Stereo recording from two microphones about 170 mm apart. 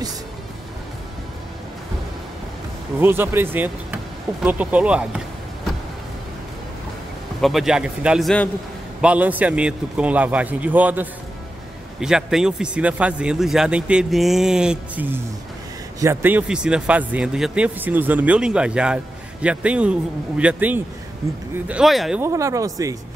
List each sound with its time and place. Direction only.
3.0 s speech: 15° right (ahead or behind)
7.4 s speech: centre (ahead or behind)
22.2 s speech: 15° right (ahead or behind)